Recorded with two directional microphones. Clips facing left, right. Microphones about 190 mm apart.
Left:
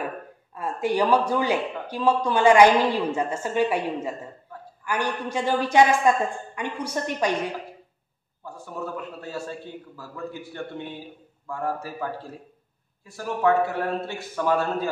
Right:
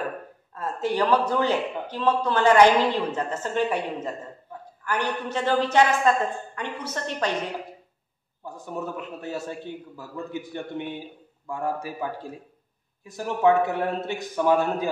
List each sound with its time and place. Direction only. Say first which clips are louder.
0.6 s speech: left 1 dB; 10° left (ahead or behind)
8.5 s a man's voice: right 1 dB; 20° right (ahead or behind)